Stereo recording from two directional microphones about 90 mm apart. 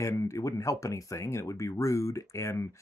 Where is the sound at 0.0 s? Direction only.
35° left (ahead or behind).